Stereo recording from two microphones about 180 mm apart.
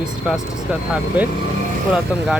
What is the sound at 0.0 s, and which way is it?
Speech, 5° right (ahead or behind).